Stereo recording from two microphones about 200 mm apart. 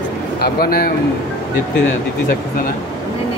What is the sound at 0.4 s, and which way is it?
Speech, 50° left (ahead or behind).